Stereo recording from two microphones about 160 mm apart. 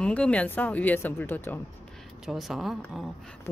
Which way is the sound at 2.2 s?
Centre (ahead or behind).